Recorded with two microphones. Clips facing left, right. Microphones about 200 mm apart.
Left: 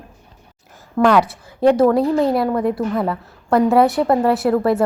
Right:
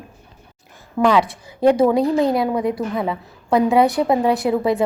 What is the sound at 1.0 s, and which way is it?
A woman's voice, centre (ahead or behind).